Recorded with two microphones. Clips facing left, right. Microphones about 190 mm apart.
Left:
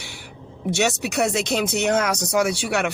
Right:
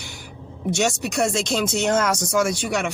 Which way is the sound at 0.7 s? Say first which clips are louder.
Even; 65° left (ahead or behind).